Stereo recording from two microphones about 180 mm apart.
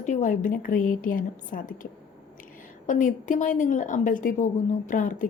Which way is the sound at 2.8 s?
45° left (ahead or behind).